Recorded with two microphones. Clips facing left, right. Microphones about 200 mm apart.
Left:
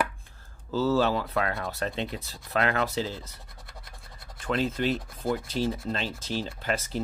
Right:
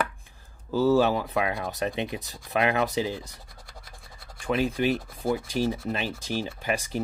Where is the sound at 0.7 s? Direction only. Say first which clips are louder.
Right 3 dB; 15° right (ahead or behind).